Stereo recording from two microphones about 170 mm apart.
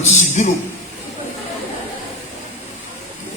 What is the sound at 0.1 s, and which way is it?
Speech, 45° left (ahead or behind).